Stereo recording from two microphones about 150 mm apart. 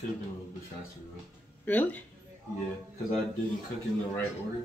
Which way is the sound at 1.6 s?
10° left (ahead or behind).